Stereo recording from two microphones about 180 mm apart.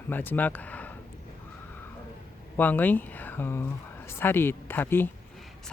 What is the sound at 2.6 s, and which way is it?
Speech, 10° left (ahead or behind).